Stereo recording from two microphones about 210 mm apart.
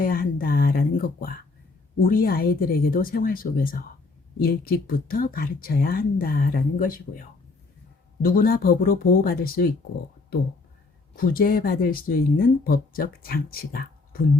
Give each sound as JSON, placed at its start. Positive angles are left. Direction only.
{"t": 0.0, "sound": "a sound", "side_deg": 45}
{"t": 2.0, "sound": "speech", "side_deg": 40}
{"t": 11.2, "sound": "speech", "side_deg": 40}